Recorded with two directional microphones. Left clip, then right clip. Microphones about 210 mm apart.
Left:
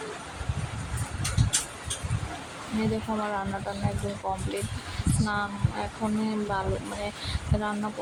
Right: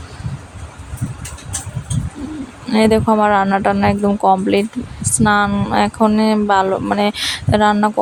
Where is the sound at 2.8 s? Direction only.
45° right (ahead or behind).